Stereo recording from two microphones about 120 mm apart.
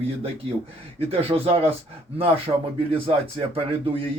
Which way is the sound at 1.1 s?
55° right (ahead or behind).